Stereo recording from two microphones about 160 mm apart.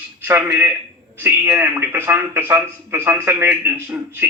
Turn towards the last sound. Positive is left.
turn(degrees=-10)  # may be behind; listen again after turning